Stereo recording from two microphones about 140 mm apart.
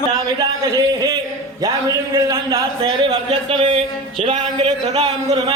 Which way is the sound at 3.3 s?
45° right (ahead or behind).